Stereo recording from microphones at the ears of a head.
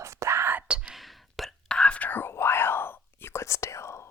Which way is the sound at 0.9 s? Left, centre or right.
Centre.